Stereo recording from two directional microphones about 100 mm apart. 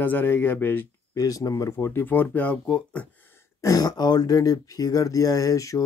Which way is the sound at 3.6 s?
40° left (ahead or behind).